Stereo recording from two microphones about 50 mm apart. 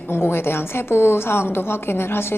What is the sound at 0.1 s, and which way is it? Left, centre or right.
A woman's voice, left.